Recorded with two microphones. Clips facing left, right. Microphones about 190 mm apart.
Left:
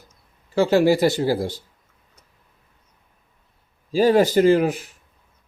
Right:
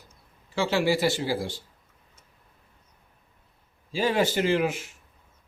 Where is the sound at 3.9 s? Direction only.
40° left (ahead or behind).